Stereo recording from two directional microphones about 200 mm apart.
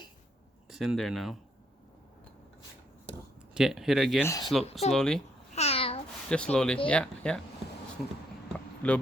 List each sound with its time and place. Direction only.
0.7 s speech: centre (ahead or behind)
3.5 s speech: centre (ahead or behind)
4.2 s speech: 15° left (ahead or behind)
4.9 s speech: centre (ahead or behind)
5.5 s babbling: 30° left (ahead or behind)
6.2 s speech: 5° left (ahead or behind)
8.5 s a sound: 5° left (ahead or behind)